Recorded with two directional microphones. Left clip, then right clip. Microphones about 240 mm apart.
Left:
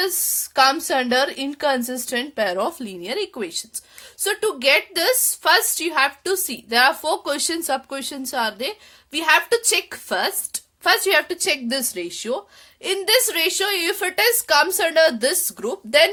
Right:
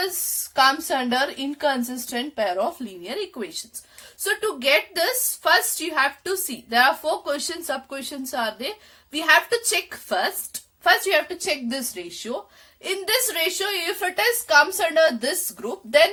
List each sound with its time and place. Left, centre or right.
0.5 s a woman's voice: left